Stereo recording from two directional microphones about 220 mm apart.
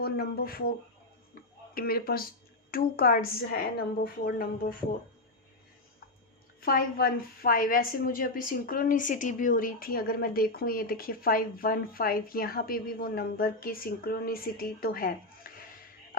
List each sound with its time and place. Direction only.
0.0 s speech: 45° left (ahead or behind)
1.7 s a woman's voice: 45° left (ahead or behind)
6.6 s a woman's voice: 40° left (ahead or behind)